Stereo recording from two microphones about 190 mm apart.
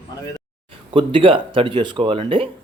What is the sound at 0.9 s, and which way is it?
Speech, 25° right (ahead or behind).